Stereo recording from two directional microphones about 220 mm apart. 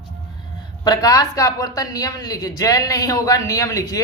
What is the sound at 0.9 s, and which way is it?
A woman's voice, 15° left (ahead or behind).